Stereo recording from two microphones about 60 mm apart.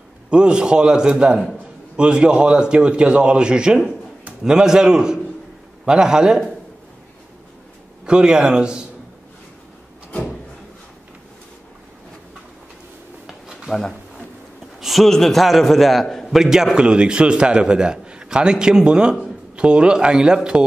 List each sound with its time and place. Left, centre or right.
0.3 s a man's voice: centre
8.0 s a man's voice: centre
13.7 s speech: centre
14.8 s a sound: centre
15.0 s a man's voice: centre